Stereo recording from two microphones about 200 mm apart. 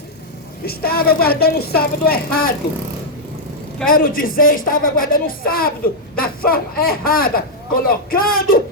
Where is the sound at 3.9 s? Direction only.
45° left (ahead or behind).